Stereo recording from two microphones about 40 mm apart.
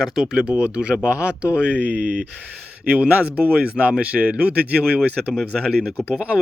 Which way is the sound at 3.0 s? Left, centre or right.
Right.